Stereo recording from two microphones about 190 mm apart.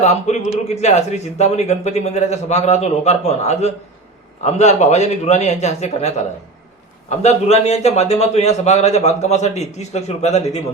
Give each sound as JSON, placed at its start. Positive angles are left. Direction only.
{"t": 0.0, "sound": "a man's voice", "side_deg": 35}